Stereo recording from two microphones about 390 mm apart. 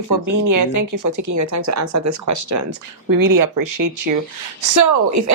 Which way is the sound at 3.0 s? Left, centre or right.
Right.